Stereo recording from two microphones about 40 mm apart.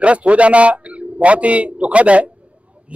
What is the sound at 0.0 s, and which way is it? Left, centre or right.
Speech, right.